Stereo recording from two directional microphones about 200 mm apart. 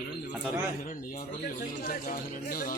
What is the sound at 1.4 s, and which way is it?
Speech, 45° left (ahead or behind).